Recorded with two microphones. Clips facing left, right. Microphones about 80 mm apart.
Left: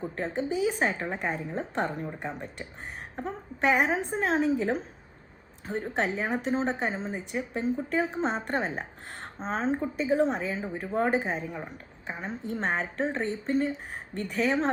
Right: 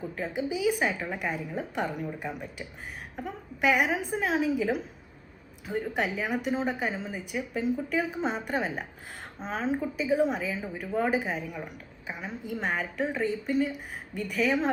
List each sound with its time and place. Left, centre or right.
0.0 s a woman's voice: left
0.3 s a woman's voice: left